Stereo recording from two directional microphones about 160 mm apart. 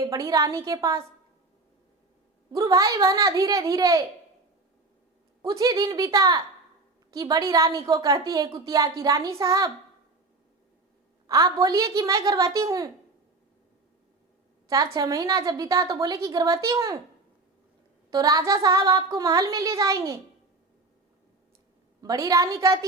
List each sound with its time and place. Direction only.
0.0 s a woman's voice: 20° right (ahead or behind)
2.5 s a woman's voice: 20° right (ahead or behind)
5.4 s a woman's voice: 25° right (ahead or behind)
11.3 s a woman's voice: 20° right (ahead or behind)
14.9 s a woman's voice: 20° right (ahead or behind)
18.1 s a woman's voice: 20° right (ahead or behind)
22.0 s a woman's voice: 20° right (ahead or behind)